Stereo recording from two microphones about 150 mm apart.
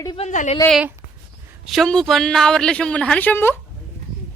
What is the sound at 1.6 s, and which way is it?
Speech, centre (ahead or behind).